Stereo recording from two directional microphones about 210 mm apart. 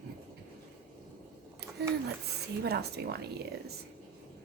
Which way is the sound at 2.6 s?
50° right (ahead or behind).